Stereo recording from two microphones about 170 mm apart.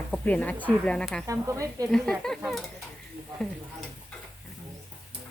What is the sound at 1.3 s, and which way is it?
Speech, 20° right (ahead or behind).